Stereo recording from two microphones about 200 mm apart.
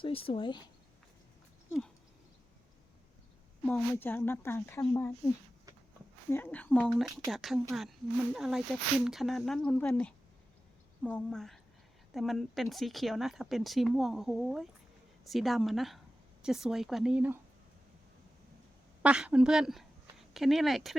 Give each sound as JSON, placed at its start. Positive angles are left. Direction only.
{"t": 0.0, "sound": "speech", "side_deg": 25}
{"t": 3.7, "sound": "speech", "side_deg": 10}
{"t": 6.3, "sound": "speech", "side_deg": 10}
{"t": 19.0, "sound": "speech", "side_deg": -5}